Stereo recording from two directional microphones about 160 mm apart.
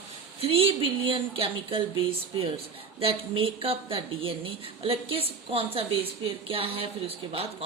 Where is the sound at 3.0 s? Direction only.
35° right (ahead or behind).